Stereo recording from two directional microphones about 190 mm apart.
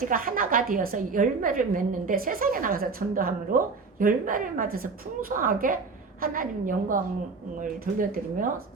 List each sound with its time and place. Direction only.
0.1 s a woman's voice: 45° right (ahead or behind)